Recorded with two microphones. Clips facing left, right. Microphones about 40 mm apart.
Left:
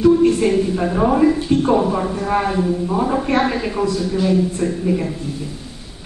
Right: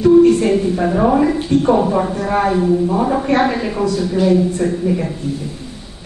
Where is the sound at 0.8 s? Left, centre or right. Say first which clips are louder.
Right 1 dB; centre.